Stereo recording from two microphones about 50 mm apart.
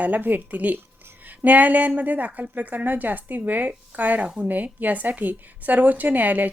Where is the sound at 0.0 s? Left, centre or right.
Right.